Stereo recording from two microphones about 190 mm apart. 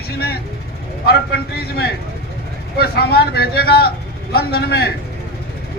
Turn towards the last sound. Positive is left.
turn(degrees=55)  # may be behind; listen again after turning